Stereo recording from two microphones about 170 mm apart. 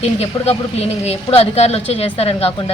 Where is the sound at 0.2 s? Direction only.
35° left (ahead or behind).